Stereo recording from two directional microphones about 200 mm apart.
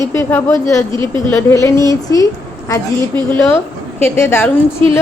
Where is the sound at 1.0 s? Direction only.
25° right (ahead or behind).